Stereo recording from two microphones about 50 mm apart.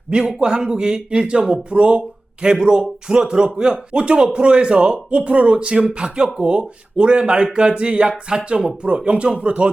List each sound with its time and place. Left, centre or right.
0.1 s speech: centre